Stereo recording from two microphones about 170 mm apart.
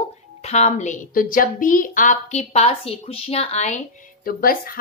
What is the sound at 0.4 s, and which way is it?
A woman's voice, 40° left (ahead or behind).